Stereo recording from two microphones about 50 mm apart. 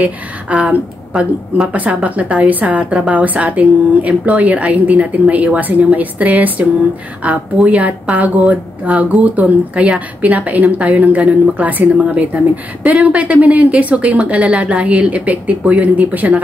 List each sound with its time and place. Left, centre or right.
0.0 s speech: right